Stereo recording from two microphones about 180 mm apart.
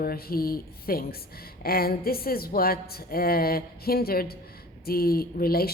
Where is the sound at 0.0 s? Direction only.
55° left (ahead or behind).